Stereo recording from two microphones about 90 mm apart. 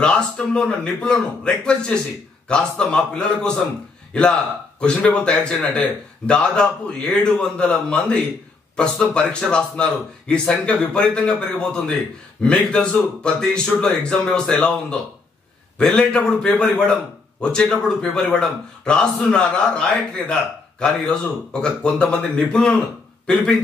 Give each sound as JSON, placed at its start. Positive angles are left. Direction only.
{"t": 0.0, "sound": "a man's voice", "side_deg": 10}